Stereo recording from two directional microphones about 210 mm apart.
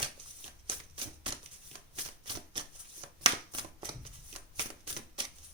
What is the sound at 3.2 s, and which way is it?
Shuffling cards, 25° right (ahead or behind).